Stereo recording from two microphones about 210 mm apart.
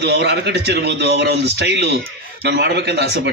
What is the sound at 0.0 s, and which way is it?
A man's voice, 55° right (ahead or behind).